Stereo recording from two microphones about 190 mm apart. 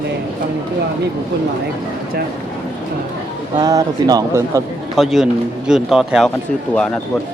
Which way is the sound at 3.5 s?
20° right (ahead or behind).